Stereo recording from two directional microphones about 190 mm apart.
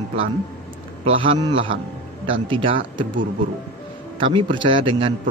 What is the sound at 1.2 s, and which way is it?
Speech, 25° right (ahead or behind).